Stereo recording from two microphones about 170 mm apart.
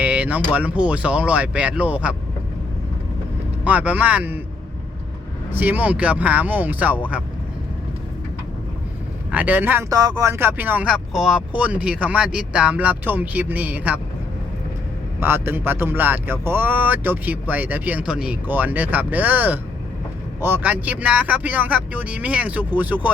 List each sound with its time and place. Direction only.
0.0 s music: 10° right (ahead or behind)
0.5 s speech: 10° right (ahead or behind)
3.6 s speech: 10° right (ahead or behind)
5.5 s speech: 10° right (ahead or behind)
9.3 s speech: 10° right (ahead or behind)
15.2 s speech: 15° right (ahead or behind)